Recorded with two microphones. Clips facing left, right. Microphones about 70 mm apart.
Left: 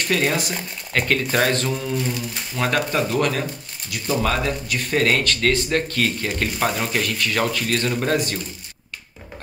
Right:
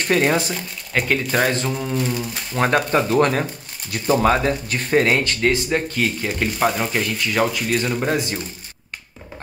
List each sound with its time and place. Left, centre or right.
0.1 s speech: right
0.9 s speech: centre
2.1 s speech: right; by 8.2 s centre